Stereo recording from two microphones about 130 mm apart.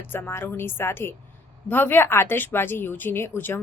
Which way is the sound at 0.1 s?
15° left (ahead or behind).